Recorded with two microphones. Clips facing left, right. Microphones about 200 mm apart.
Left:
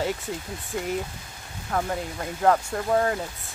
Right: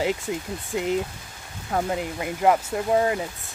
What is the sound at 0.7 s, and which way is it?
Speech, 20° right (ahead or behind).